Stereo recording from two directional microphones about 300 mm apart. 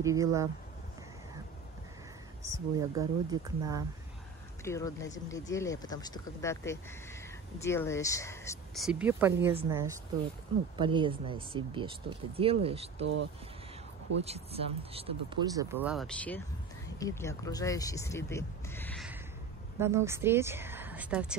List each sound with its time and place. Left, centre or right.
0.0 s speech: centre
2.4 s speech: centre
4.6 s speech: centre
8.8 s speech: centre
13.0 s speech: right
14.2 s speech: centre
19.8 s a woman's voice: centre